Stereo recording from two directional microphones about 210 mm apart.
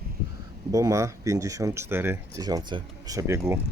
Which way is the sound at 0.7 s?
15° right (ahead or behind).